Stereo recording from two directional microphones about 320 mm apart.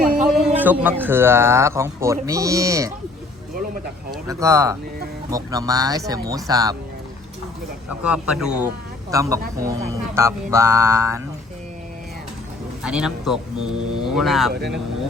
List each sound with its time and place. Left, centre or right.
0.0 s a sound: right
0.3 s a man's voice: centre
4.1 s a man's voice: centre
7.9 s a man's voice: centre
12.8 s speech: centre